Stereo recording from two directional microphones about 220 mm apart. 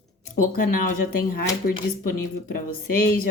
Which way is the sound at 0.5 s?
40° left (ahead or behind).